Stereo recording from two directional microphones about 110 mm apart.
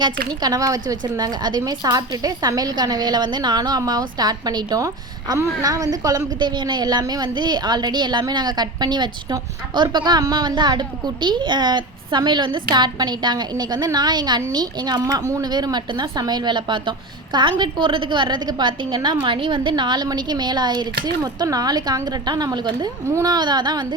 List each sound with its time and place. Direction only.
0.0 s a woman's voice: 35° right (ahead or behind)
23.0 s a woman's voice: 25° right (ahead or behind)
23.3 s a woman's voice: 40° right (ahead or behind)